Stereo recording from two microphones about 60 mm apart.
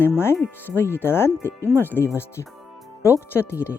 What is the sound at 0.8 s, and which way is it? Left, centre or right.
Speech, left.